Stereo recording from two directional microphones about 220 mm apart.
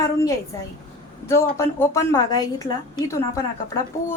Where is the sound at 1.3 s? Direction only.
15° left (ahead or behind).